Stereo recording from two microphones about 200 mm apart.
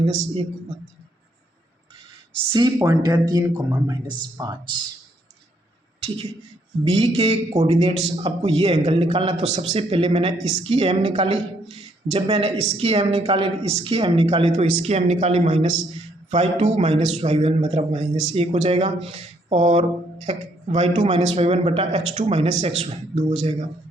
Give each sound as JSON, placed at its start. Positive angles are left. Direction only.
{"t": 0.0, "sound": "speech", "side_deg": -35}
{"t": 2.5, "sound": "speech", "side_deg": -20}
{"t": 6.0, "sound": "a woman's voice", "side_deg": -30}